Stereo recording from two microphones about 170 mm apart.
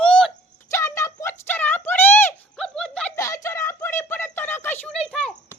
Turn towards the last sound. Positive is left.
turn(degrees=5)  # may be behind; listen again after turning